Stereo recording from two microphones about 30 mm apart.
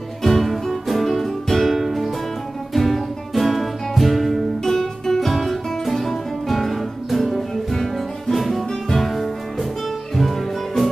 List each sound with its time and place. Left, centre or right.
0.2 s music: centre
4.7 s music: centre
5.3 s music: centre